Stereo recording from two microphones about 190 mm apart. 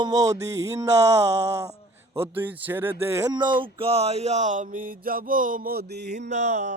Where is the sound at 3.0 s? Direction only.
15° right (ahead or behind); by 6.2 s 60° right (ahead or behind).